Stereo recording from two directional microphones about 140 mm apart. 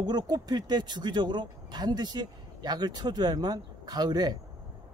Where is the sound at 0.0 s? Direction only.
30° right (ahead or behind).